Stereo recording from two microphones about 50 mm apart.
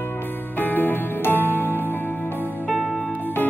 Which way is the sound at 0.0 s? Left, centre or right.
Left.